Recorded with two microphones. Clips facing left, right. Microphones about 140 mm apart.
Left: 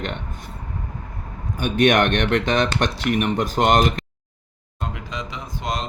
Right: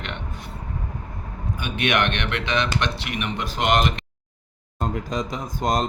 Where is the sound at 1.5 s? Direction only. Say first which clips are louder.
Left 6 dB; 45° left (ahead or behind).